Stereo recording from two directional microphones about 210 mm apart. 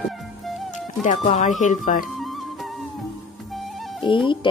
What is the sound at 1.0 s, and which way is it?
Speech, 35° left (ahead or behind).